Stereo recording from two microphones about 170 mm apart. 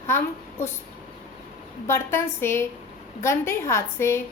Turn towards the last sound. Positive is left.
turn(degrees=15)  # may be behind; listen again after turning